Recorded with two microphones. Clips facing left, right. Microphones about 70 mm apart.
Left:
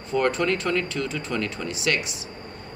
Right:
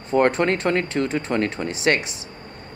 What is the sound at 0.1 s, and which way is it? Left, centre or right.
Speech, right.